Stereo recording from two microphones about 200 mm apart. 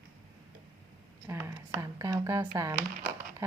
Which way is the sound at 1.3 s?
15° right (ahead or behind).